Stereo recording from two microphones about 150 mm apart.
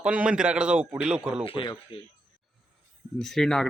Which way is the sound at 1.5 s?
35° left (ahead or behind).